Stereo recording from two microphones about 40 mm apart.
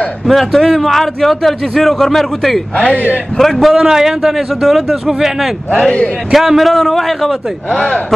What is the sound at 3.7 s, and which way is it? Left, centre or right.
A man's voice, centre.